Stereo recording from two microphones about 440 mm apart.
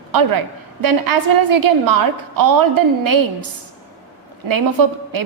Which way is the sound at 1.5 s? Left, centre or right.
Right.